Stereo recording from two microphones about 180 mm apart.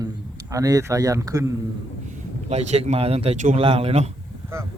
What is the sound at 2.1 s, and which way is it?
A man's voice, 40° right (ahead or behind).